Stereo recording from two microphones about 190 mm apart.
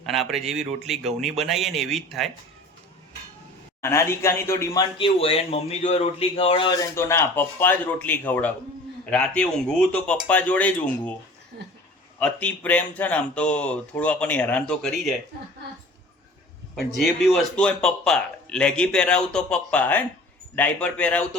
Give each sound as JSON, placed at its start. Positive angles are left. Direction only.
{"t": 0.0, "sound": "speech", "side_deg": 0}
{"t": 3.8, "sound": "speech", "side_deg": 15}
{"t": 6.9, "sound": "speech", "side_deg": 15}
{"t": 12.2, "sound": "speech", "side_deg": 5}
{"t": 16.7, "sound": "speech", "side_deg": 0}